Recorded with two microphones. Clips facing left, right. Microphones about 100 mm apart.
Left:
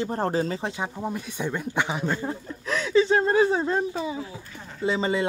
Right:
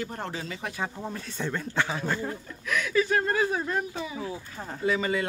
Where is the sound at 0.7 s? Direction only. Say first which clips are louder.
Left 3 dB; 15° left (ahead or behind).